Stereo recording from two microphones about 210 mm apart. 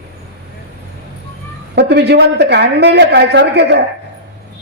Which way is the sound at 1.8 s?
55° right (ahead or behind).